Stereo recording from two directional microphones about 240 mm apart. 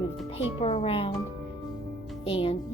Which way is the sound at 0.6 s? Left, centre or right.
Left.